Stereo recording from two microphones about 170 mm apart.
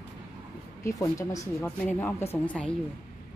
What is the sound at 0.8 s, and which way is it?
A woman's voice, 20° left (ahead or behind).